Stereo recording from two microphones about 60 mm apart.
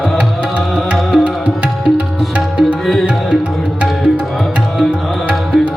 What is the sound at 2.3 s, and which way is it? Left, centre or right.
Music, right.